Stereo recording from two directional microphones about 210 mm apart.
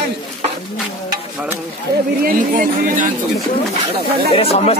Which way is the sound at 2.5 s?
40° right (ahead or behind).